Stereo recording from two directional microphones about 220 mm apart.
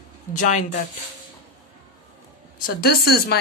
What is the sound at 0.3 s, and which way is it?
Speech, 35° left (ahead or behind).